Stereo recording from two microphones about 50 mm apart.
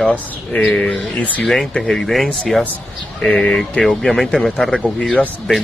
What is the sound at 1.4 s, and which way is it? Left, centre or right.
Speech, centre.